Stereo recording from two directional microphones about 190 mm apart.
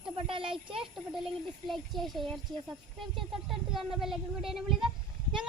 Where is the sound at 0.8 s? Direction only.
Centre (ahead or behind).